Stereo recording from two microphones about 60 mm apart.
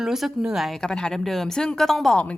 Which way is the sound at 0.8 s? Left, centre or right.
Centre.